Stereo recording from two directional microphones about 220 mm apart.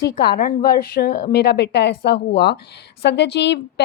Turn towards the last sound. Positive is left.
turn(degrees=50)  # may be behind; listen again after turning